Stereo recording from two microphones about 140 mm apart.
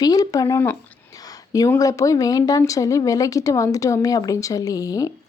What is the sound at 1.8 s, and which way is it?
Speech, 25° left (ahead or behind).